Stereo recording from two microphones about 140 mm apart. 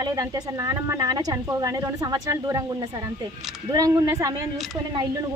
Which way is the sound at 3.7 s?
25° right (ahead or behind).